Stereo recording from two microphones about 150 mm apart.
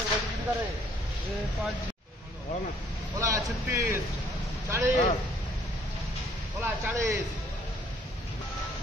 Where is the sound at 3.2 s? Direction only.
15° right (ahead or behind).